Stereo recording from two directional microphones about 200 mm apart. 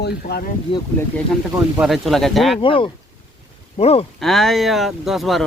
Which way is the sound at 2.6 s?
25° left (ahead or behind).